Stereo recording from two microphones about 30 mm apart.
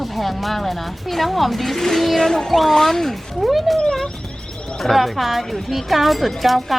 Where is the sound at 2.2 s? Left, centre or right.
Centre.